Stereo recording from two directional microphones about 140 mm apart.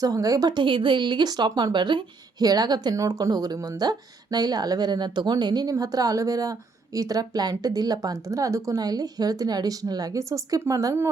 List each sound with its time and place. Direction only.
0.0 s speech: 25° right (ahead or behind)